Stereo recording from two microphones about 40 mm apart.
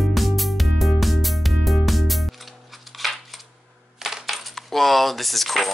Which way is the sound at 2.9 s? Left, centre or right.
Centre.